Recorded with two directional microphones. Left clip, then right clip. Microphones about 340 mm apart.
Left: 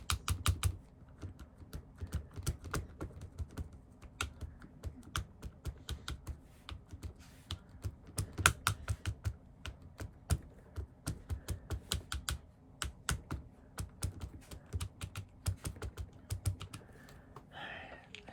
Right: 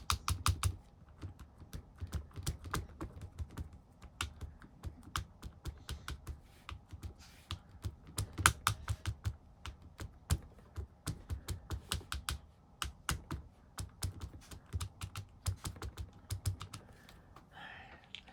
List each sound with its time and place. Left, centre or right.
0.1 s typing: centre
2.0 s typing: centre
4.2 s computer keyboard: centre
17.5 s a sound: centre